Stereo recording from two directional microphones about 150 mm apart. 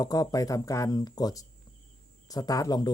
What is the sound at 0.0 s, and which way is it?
A man's voice, 25° left (ahead or behind).